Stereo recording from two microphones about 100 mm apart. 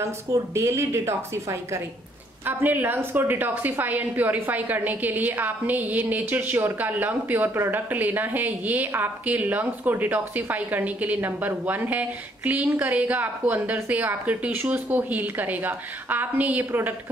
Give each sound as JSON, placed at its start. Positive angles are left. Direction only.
{"t": 0.3, "sound": "a woman's voice", "side_deg": -30}